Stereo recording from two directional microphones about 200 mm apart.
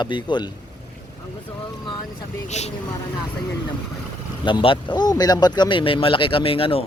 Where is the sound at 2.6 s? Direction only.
35° left (ahead or behind).